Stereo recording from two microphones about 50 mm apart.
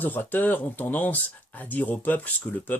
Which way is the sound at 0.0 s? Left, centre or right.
Left.